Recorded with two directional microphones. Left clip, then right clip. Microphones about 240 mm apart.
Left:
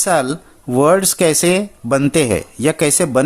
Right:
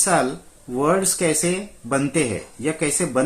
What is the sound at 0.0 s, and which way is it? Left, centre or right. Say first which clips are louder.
Speech: left 4 dB; left.